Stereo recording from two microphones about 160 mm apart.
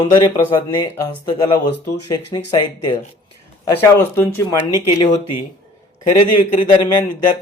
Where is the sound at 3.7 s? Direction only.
15° left (ahead or behind).